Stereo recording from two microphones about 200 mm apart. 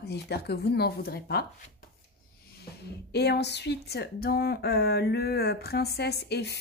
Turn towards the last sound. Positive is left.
turn(degrees=55)  # may be behind; listen again after turning